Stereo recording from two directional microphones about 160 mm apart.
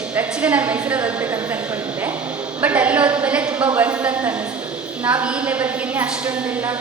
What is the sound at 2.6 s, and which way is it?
A woman's voice, 10° right (ahead or behind).